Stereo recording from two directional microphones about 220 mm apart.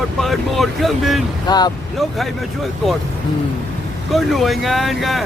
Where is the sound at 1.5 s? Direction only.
20° left (ahead or behind).